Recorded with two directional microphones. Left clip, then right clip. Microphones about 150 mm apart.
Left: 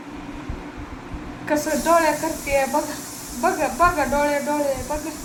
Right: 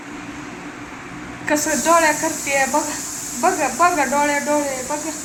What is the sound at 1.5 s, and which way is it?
A woman's voice, 20° right (ahead or behind).